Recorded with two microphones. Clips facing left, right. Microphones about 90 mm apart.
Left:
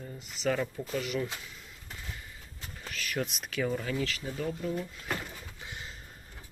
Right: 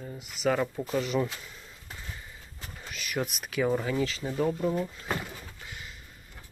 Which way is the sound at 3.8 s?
15° right (ahead or behind).